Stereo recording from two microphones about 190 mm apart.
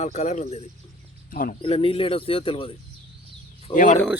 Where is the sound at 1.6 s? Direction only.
30° left (ahead or behind).